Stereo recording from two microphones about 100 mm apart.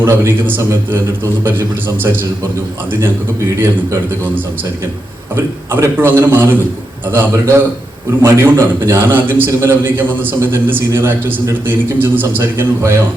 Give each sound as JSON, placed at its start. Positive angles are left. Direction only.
{"t": 0.0, "sound": "a man's voice", "side_deg": -20}
{"t": 2.9, "sound": "a man's voice", "side_deg": -25}
{"t": 5.7, "sound": "a man's voice", "side_deg": -20}